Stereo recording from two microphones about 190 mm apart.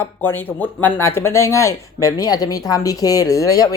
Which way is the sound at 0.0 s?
10° left (ahead or behind).